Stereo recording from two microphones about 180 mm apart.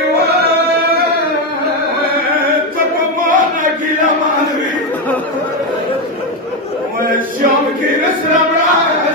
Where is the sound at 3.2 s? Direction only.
45° right (ahead or behind).